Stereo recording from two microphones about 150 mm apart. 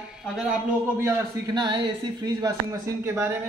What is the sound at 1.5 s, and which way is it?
Speech, 30° right (ahead or behind).